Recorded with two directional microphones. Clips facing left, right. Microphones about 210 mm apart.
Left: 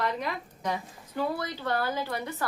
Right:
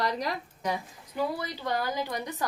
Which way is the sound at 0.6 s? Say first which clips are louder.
Even; 10° right (ahead or behind).